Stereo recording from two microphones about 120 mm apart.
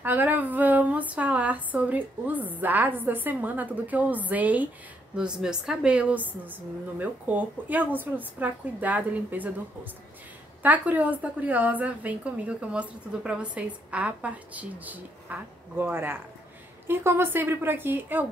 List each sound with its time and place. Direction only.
0.0 s a woman's voice: 15° right (ahead or behind)
10.6 s a woman's voice: 15° right (ahead or behind)